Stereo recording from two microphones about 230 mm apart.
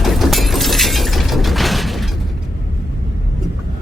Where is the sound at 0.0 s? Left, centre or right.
Centre.